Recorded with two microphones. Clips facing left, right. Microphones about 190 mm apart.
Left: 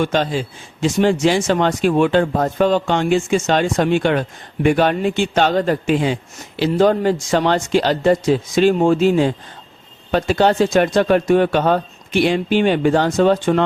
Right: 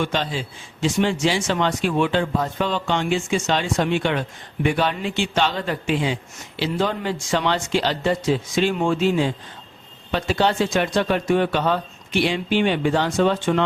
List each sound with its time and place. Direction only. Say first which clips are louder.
0.0 s speech: left 6 dB; 45° left (ahead or behind)